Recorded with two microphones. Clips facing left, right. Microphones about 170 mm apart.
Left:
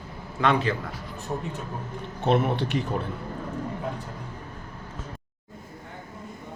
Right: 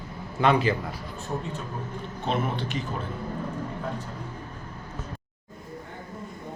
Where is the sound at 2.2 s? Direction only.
65° left (ahead or behind).